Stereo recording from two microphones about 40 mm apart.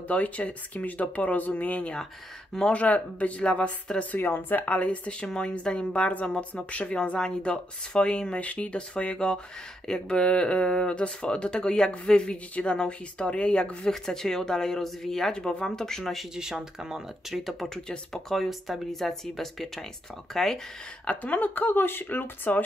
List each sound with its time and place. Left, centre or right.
0.1 s speech: left
4.2 s speech: left
4.6 s speech: left
6.7 s speech: left
7.2 s speech: centre
8.4 s speech: left
13.8 s speech: centre
16.0 s speech: centre
16.3 s speech: centre
17.3 s speech: centre
17.8 s speech: centre
18.3 s speech: centre
21.2 s speech: left